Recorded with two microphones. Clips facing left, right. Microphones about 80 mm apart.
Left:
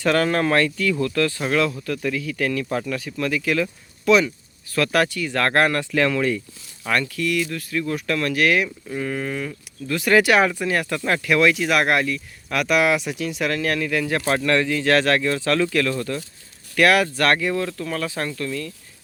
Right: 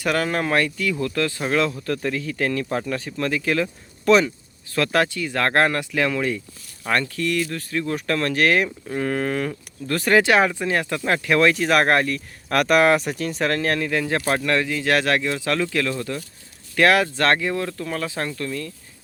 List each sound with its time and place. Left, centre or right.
0.0 s speech: centre
1.9 s speech: right
4.7 s speech: right
6.9 s speech: right
10.2 s speech: right